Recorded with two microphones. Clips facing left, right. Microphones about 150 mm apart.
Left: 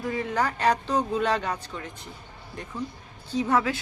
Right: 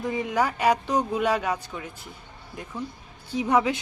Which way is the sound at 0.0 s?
15° right (ahead or behind).